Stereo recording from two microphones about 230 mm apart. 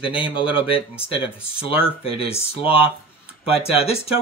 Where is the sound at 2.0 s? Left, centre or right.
Left.